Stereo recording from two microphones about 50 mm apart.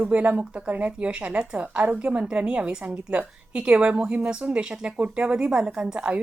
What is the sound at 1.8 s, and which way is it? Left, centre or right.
Speech, right.